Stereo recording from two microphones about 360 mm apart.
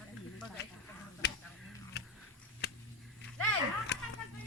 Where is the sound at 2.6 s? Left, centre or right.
Left.